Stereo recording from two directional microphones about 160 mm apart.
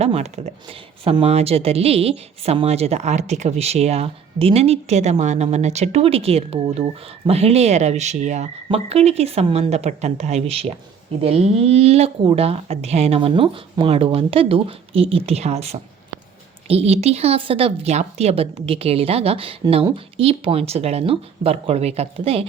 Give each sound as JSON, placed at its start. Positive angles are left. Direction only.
{"t": 0.0, "sound": "speech", "side_deg": -40}